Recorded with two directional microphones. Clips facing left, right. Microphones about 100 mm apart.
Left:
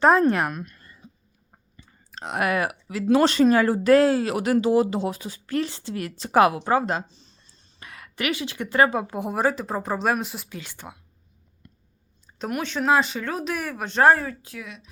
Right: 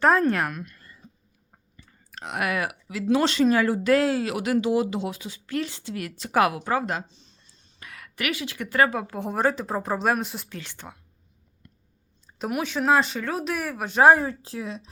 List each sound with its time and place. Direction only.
0.0 s a woman's voice: 20° left (ahead or behind)
9.2 s a woman's voice: 5° left (ahead or behind)
12.4 s a woman's voice: 5° right (ahead or behind)
14.2 s speech: 30° right (ahead or behind)